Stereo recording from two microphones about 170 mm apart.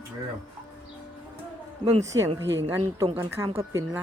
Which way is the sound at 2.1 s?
25° right (ahead or behind).